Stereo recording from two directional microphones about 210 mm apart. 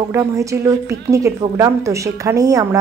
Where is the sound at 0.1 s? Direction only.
15° right (ahead or behind).